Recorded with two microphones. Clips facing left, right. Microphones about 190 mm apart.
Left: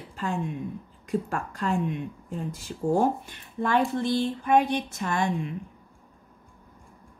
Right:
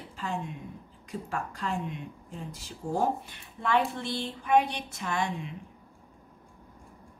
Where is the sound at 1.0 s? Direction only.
45° left (ahead or behind).